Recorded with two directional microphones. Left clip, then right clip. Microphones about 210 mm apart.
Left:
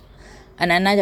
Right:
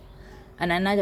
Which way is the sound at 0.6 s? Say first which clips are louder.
Left 7 dB; 30° left (ahead or behind).